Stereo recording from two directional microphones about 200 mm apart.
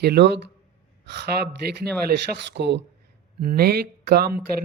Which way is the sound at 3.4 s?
50° right (ahead or behind).